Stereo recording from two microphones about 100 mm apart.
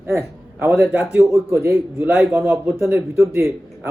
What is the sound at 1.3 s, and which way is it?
Speech, 25° right (ahead or behind).